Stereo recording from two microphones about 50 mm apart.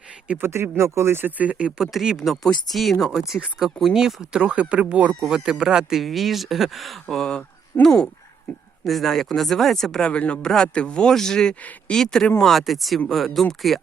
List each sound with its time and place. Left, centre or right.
0.4 s speech: right
1.2 s speech: right
1.8 s speech: centre
5.6 s speech: centre
10.0 s speech: left; by 13.8 s centre